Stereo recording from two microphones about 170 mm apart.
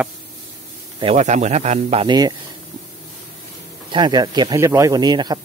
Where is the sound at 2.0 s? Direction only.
25° right (ahead or behind).